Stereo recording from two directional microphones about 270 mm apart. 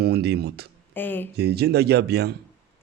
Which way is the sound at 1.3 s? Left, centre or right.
Right.